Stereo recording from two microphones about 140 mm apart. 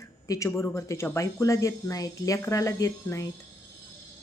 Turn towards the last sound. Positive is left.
turn(degrees=20)  # may be behind; listen again after turning